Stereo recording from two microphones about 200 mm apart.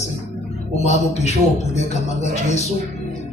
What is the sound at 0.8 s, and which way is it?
Speech, 35° left (ahead or behind).